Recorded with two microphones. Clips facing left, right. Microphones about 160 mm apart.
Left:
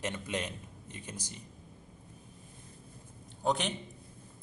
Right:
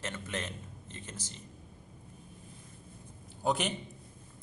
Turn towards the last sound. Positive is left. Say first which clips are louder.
# even
turn(degrees=0)  # may be behind; listen again after turning